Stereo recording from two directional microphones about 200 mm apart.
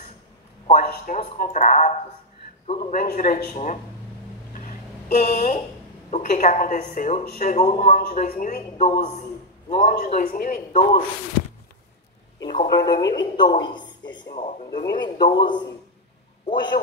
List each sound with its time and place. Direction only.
0.7 s a woman's voice: 35° left (ahead or behind)
4.6 s a sound: 40° left (ahead or behind)
6.0 s a woman's voice: 35° left (ahead or behind)
12.4 s a man's voice: 20° left (ahead or behind)